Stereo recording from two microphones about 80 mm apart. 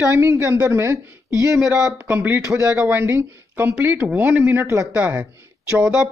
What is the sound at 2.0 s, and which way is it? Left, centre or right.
Speech, centre.